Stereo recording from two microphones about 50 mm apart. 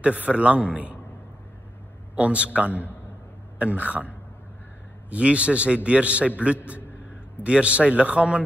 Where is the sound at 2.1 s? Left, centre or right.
Right.